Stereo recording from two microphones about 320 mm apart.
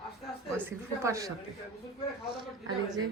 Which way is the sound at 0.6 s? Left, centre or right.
Centre.